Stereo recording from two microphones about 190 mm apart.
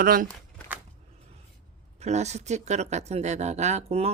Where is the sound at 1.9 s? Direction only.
35° right (ahead or behind).